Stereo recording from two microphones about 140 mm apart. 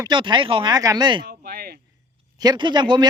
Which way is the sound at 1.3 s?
90° right.